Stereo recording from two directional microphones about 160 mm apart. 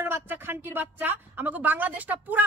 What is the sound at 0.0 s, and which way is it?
A woman's voice, 15° right (ahead or behind).